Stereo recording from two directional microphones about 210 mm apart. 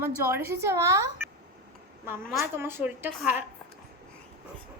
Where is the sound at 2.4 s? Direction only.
10° right (ahead or behind).